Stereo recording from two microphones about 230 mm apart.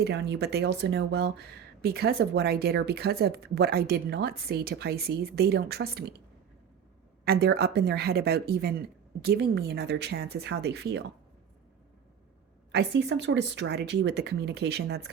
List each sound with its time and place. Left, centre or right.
0.0 s speech: right
7.3 s speech: right
12.7 s speech: right